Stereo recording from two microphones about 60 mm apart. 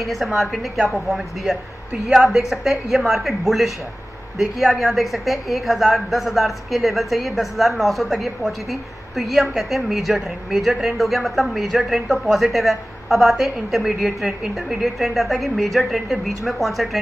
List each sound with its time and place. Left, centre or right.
0.0 s speech: centre